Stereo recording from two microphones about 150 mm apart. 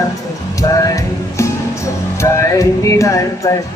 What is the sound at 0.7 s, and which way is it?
Music, 20° left (ahead or behind).